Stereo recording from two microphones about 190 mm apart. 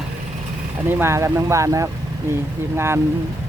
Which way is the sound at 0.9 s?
10° right (ahead or behind).